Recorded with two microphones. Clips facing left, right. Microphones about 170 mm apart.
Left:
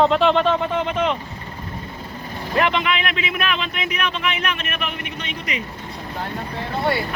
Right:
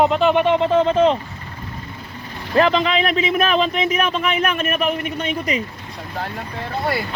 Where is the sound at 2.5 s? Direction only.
35° right (ahead or behind).